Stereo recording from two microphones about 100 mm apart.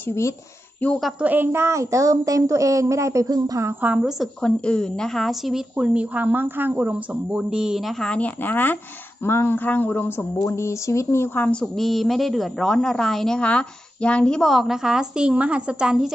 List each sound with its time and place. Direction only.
0.7 s a woman's voice: 10° left (ahead or behind)
1.2 s a woman's voice: 20° right (ahead or behind); by 3.7 s 35° right (ahead or behind)
3.8 s a woman's voice: 10° right (ahead or behind)
4.2 s a woman's voice: 10° left (ahead or behind)
5.8 s a woman's voice: 15° right (ahead or behind); by 11.4 s 25° left (ahead or behind)
11.6 s a woman's voice: centre (ahead or behind)